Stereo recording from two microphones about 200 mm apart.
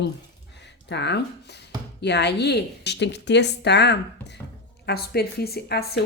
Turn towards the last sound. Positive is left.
turn(degrees=55)  # may be behind; listen again after turning